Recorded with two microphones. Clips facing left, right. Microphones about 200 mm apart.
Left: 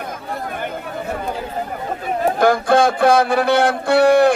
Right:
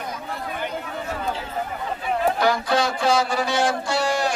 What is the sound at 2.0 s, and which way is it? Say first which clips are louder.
Speech: left 5 dB; 45° left (ahead or behind).